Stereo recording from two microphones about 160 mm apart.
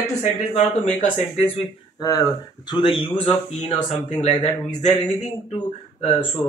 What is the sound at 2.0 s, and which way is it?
Speech, 20° left (ahead or behind).